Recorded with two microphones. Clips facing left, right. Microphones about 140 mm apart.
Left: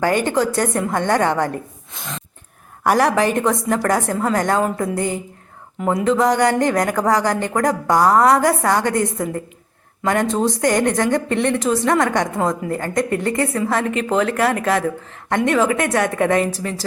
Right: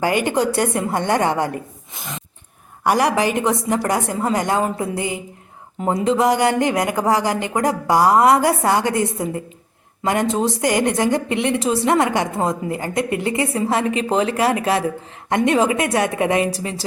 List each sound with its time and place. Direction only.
0.0 s a woman's voice: 10° right (ahead or behind)
2.8 s a woman's voice: centre (ahead or behind)
5.8 s speech: 25° right (ahead or behind)
6.1 s a woman's voice: 10° right (ahead or behind)
13.5 s a woman's voice: 25° right (ahead or behind)